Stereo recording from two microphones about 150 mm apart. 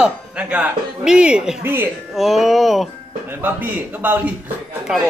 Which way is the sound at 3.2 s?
15° right (ahead or behind).